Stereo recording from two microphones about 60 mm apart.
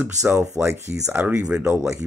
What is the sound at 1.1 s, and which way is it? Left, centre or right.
Speech, right.